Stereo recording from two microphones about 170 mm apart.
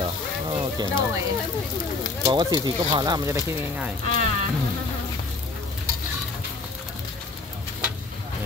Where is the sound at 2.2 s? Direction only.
25° right (ahead or behind).